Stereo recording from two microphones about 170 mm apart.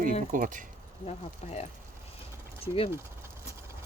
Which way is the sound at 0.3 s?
50° right (ahead or behind).